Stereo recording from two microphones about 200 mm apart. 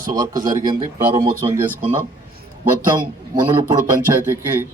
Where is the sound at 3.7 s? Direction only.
15° right (ahead or behind).